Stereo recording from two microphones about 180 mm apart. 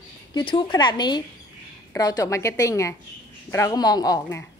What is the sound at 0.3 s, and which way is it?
A woman's voice, 25° left (ahead or behind).